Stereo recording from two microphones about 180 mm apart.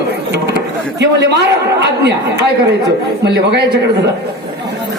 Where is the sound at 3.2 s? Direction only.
70° right (ahead or behind).